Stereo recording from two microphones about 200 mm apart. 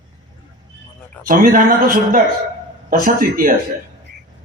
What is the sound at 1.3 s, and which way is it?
A man's voice, 45° right (ahead or behind).